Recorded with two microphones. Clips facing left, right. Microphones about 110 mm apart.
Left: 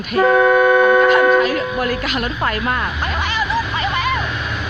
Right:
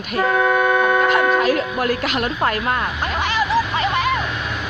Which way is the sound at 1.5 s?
50° right (ahead or behind).